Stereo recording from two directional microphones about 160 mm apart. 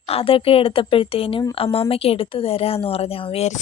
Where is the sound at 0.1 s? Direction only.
35° left (ahead or behind).